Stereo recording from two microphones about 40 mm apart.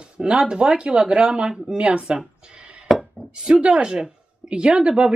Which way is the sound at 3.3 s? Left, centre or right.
Right.